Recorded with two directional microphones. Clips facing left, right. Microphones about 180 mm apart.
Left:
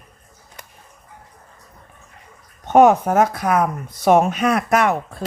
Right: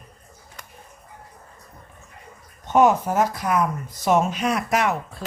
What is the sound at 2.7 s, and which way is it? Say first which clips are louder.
A woman's voice: left 5 dB; 60° left (ahead or behind).